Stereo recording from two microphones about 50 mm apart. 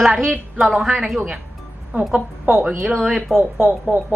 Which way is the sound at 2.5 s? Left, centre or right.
Centre.